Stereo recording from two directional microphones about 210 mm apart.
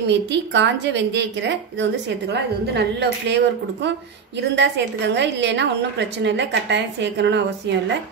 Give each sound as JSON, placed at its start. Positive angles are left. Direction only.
{"t": 0.1, "sound": "a woman's voice", "side_deg": -55}